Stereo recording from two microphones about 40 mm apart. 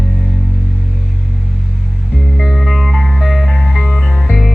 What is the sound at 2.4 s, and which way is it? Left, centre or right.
Music, centre.